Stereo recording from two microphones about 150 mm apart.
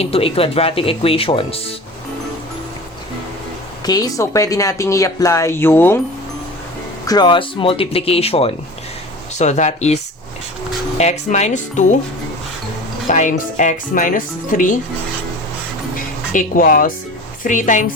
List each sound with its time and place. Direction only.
0.0 s speech: 40° left (ahead or behind)
3.8 s speech: 25° left (ahead or behind)
7.1 s speech: 30° left (ahead or behind)
9.3 s speech: 50° left (ahead or behind)
13.1 s speech: 55° left (ahead or behind)
16.3 s speech: 65° left (ahead or behind)